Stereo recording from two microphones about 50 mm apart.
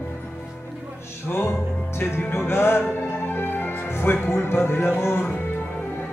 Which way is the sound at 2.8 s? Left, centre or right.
Left.